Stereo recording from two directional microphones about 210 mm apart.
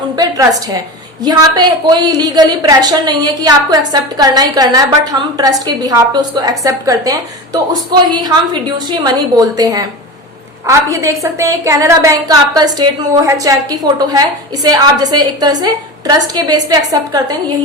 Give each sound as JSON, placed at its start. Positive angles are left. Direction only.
{"t": 1.2, "sound": "a woman's voice", "side_deg": -20}